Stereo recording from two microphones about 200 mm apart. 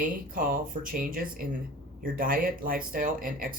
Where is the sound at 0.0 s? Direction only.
45° right (ahead or behind).